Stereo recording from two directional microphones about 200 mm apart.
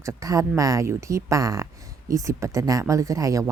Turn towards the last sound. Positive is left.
turn(degrees=-15)  # may be behind; listen again after turning